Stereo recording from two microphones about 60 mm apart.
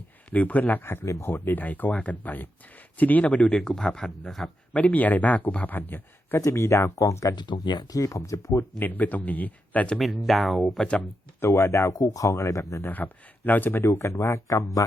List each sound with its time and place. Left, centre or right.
0.3 s speech: left
3.6 s a man's voice: centre
4.7 s speech: left
6.4 s speech: left
7.1 s speech: left
8.8 s speech: left
10.0 s speech: centre
11.3 s speech: left
11.9 s speech: left
12.8 s speech: left
13.8 s speech: left